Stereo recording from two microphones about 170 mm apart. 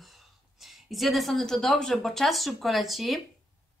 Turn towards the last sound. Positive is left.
turn(degrees=0)  # may be behind; listen again after turning